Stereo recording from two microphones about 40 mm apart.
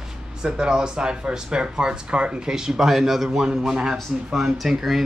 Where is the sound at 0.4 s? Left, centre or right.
Centre.